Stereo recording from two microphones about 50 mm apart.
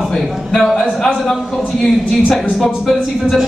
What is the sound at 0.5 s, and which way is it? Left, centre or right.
Speech, centre.